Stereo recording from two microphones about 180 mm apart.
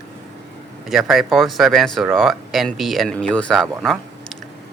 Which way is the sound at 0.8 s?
Centre (ahead or behind).